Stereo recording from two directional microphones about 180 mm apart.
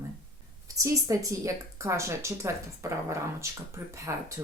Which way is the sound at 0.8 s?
20° right (ahead or behind).